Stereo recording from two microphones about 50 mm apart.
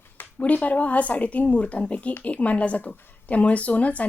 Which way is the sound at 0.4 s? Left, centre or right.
Left.